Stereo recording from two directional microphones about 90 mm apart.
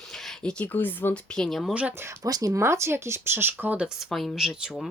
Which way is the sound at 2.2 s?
45° right (ahead or behind).